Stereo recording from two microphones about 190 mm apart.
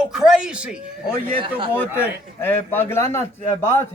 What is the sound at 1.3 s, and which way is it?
Speech, 25° right (ahead or behind).